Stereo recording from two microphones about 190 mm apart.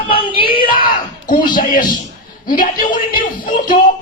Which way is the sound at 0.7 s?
45° left (ahead or behind).